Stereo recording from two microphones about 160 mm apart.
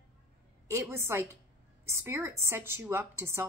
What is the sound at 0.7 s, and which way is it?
A woman's voice, 15° right (ahead or behind).